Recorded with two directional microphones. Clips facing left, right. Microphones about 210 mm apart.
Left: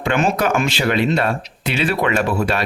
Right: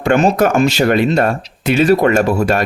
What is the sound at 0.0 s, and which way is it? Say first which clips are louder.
Speech: right 6 dB; 40° right (ahead or behind).